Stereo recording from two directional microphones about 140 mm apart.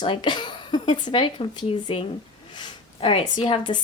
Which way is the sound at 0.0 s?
35° left (ahead or behind).